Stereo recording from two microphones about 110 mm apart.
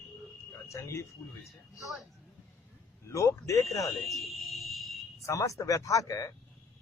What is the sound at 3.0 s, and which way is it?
Speech, 30° left (ahead or behind).